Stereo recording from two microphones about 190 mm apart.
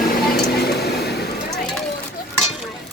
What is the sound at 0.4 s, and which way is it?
Vehicle, 55° left (ahead or behind).